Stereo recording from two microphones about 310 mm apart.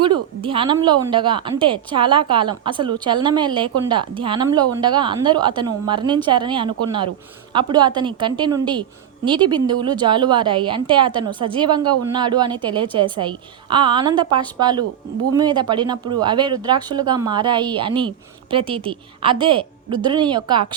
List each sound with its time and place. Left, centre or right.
0.0 s a woman's voice: centre